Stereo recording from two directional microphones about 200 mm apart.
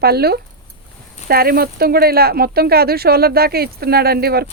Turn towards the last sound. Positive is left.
turn(degrees=-50)  # may be behind; listen again after turning